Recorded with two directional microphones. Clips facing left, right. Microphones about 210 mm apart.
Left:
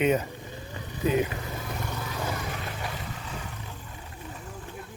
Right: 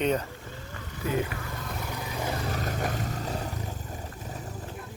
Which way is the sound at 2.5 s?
40° right (ahead or behind).